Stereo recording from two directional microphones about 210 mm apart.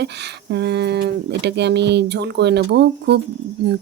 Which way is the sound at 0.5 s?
55° right (ahead or behind).